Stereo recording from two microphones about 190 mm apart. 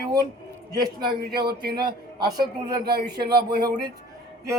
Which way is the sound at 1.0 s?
55° right (ahead or behind).